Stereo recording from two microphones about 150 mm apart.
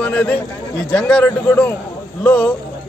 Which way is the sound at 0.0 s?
10° left (ahead or behind).